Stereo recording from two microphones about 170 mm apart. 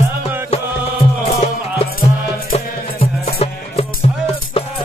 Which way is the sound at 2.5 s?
35° left (ahead or behind).